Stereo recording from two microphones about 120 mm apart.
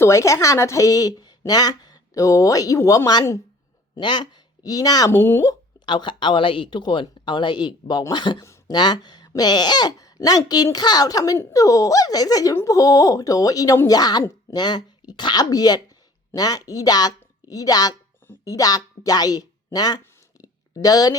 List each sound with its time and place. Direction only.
0.0 s a woman's voice: 25° left (ahead or behind)
5.8 s speech: 40° left (ahead or behind)
20.4 s a sound: 30° left (ahead or behind)